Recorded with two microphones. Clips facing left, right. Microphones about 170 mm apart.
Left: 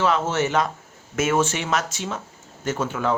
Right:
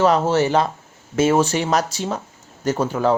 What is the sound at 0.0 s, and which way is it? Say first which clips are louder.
Speech: right 5 dB; 35° right (ahead or behind).